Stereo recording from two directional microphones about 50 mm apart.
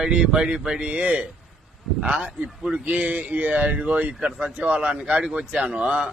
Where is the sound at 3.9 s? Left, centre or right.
Right.